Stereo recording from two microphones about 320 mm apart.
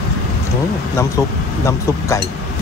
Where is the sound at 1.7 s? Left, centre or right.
Centre.